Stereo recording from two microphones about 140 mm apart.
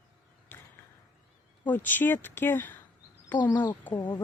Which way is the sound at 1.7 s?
15° left (ahead or behind).